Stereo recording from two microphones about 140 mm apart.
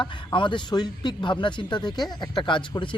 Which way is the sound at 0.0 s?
35° left (ahead or behind).